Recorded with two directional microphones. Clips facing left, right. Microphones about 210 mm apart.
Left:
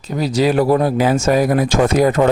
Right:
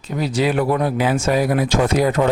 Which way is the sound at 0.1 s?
35° left (ahead or behind).